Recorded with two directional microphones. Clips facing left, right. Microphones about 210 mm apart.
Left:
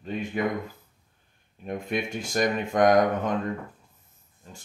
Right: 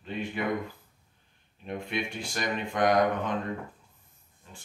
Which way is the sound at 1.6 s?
45° left (ahead or behind).